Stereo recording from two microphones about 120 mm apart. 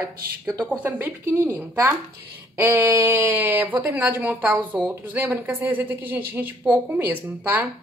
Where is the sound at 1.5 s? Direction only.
15° right (ahead or behind).